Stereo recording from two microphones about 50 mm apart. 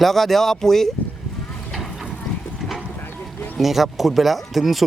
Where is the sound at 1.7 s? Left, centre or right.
Centre.